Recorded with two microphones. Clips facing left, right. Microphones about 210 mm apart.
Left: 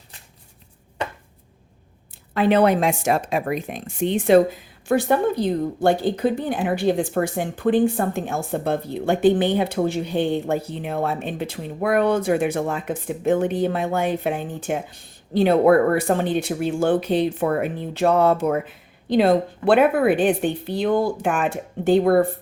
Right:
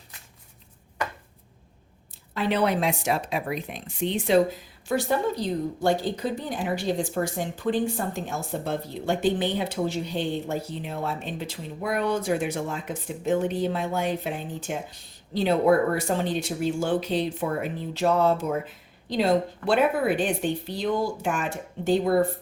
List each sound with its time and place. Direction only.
2.3 s a woman's voice: 55° left (ahead or behind)